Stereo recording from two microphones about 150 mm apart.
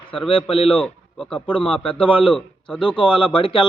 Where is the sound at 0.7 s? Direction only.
5° left (ahead or behind).